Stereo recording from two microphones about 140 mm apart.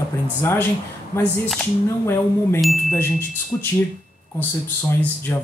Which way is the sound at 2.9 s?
15° left (ahead or behind).